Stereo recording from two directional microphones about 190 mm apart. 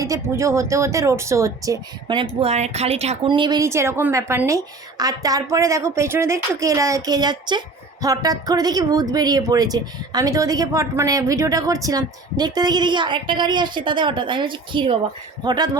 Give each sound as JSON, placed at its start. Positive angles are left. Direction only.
{"t": 0.0, "sound": "speech", "side_deg": -15}